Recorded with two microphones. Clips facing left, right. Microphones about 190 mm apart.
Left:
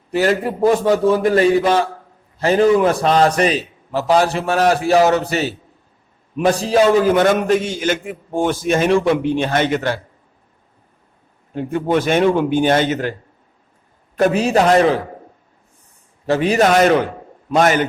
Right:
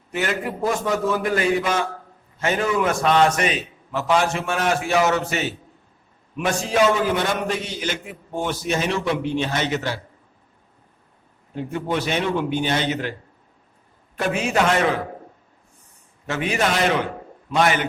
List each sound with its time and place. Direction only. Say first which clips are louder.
0.1 s a man's voice: left 8 dB; 35° left (ahead or behind); by 10.0 s 55° left (ahead or behind)
11.5 s a man's voice: left 7 dB; 50° left (ahead or behind)
14.2 s a man's voice: left 7 dB; 40° left (ahead or behind)
16.2 s a man's voice: left 8 dB; 35° left (ahead or behind)